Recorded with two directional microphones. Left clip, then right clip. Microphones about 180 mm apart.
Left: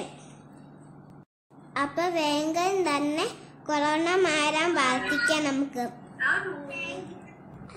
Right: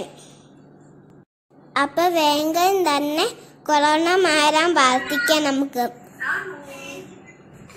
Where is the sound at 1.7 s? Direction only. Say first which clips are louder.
Right 8 dB; 40° right (ahead or behind).